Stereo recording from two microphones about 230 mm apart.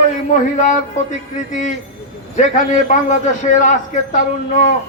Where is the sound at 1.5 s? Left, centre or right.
Left.